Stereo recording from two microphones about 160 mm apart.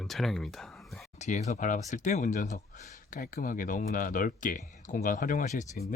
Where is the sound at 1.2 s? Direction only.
45° left (ahead or behind).